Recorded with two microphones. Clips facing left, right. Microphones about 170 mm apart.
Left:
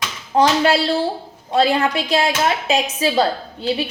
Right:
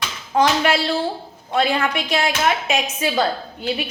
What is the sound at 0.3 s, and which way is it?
Speech, 30° left (ahead or behind).